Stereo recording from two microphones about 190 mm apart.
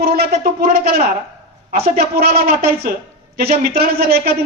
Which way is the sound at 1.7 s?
55° right (ahead or behind).